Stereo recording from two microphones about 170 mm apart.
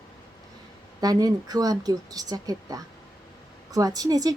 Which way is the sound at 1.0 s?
20° right (ahead or behind).